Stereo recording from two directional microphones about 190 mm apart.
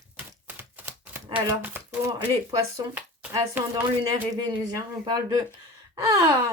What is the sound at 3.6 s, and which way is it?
Speech, 10° right (ahead or behind).